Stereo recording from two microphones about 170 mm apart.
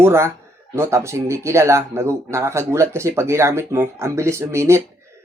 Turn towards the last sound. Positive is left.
turn(degrees=-15)  # may be behind; listen again after turning